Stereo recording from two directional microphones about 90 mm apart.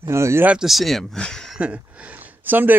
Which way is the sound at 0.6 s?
Centre (ahead or behind).